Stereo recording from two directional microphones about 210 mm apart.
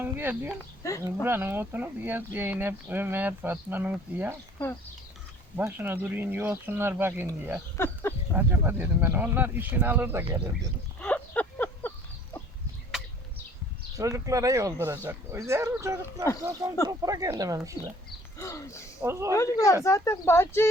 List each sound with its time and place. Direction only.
0.0 s speech: 10° right (ahead or behind)
0.6 s speech: 15° left (ahead or behind)
1.0 s speech: 10° right (ahead or behind)
5.5 s speech: 10° right (ahead or behind)
7.8 s speech: 10° left (ahead or behind)
8.4 s speech: 10° right (ahead or behind)
11.0 s a sound: 5° left (ahead or behind)
13.9 s speech: 15° right (ahead or behind)
18.3 s speech: 15° left (ahead or behind)
19.0 s speech: 15° right (ahead or behind)
19.4 s speech: 15° left (ahead or behind)